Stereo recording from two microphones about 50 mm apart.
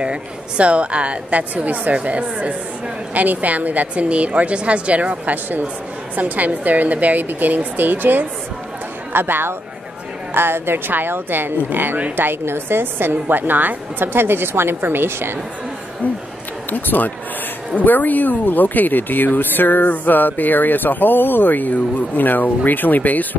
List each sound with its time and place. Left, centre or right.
0.0 s a woman's voice: right
16.7 s speech: left